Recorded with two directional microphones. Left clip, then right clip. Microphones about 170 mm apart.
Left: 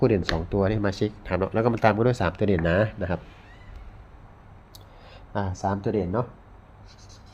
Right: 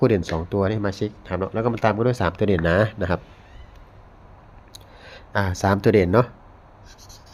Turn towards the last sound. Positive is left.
turn(degrees=-60)  # may be behind; listen again after turning